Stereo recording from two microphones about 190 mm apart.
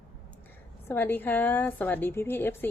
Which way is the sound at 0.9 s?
10° left (ahead or behind).